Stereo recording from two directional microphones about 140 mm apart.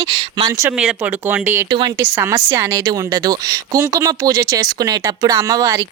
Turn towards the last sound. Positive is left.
turn(degrees=-25)  # may be behind; listen again after turning